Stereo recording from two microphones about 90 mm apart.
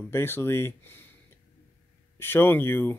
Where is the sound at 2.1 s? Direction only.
25° left (ahead or behind).